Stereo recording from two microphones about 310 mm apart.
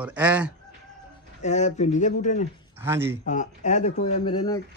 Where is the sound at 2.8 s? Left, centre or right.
Centre.